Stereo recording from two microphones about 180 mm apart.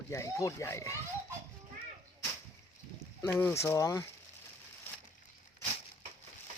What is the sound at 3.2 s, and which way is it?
Speech, 10° left (ahead or behind).